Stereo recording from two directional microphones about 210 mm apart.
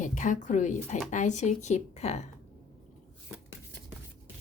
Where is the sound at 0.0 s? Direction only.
35° left (ahead or behind).